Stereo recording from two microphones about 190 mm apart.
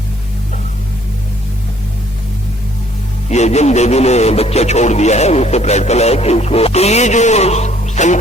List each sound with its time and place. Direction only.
3.2 s a man's voice: 35° left (ahead or behind)